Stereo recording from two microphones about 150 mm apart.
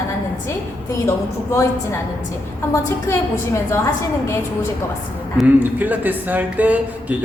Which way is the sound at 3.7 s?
20° left (ahead or behind).